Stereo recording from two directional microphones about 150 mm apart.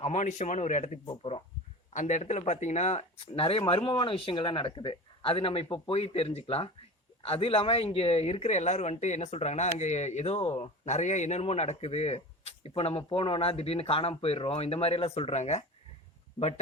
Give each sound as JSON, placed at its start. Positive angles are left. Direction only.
{"t": 0.0, "sound": "speech", "side_deg": 50}
{"t": 1.9, "sound": "a man's voice", "side_deg": 55}